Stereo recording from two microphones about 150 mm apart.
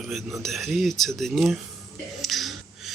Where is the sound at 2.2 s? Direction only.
Centre (ahead or behind).